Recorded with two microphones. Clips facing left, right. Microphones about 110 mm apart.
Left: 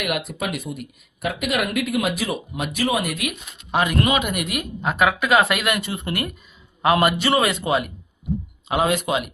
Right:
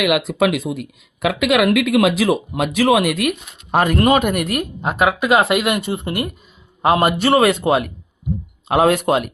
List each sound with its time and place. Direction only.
0.0 s speech: 90° right; by 3.2 s 70° right (ahead or behind)
3.7 s speech: 45° right (ahead or behind)
4.8 s speech: 25° right (ahead or behind)
6.8 s a man's voice: 35° right (ahead or behind)
7.2 s speech: 55° right (ahead or behind)